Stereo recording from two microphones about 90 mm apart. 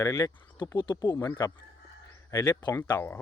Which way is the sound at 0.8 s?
55° left (ahead or behind).